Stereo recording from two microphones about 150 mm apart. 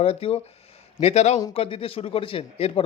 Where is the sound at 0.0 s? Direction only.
40° left (ahead or behind).